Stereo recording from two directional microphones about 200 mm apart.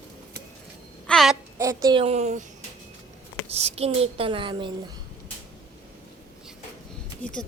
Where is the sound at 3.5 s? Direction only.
30° right (ahead or behind).